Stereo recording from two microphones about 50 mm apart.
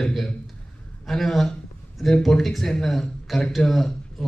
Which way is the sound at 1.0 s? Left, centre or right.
Centre.